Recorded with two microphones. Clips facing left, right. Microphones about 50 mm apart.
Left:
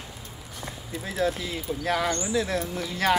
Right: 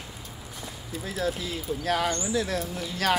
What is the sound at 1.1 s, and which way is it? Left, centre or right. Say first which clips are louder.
Speech: left 3 dB; left.